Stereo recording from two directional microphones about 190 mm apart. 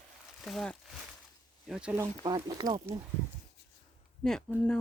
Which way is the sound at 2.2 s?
20° right (ahead or behind).